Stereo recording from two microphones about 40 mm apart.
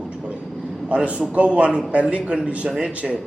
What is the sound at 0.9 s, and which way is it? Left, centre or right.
A man's voice, right.